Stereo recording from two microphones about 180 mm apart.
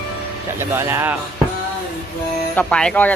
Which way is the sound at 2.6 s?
5° left (ahead or behind).